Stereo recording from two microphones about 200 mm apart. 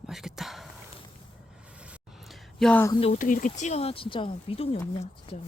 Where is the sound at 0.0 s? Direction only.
Centre (ahead or behind).